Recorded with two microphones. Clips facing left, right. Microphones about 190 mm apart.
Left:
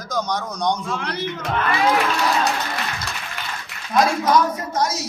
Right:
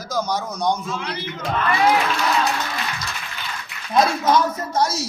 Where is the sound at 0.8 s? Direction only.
55° left (ahead or behind).